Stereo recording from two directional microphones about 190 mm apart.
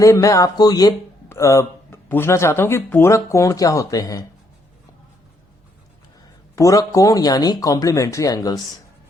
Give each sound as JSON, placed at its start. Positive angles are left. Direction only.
{"t": 0.0, "sound": "speech", "side_deg": 15}
{"t": 6.6, "sound": "speech", "side_deg": 15}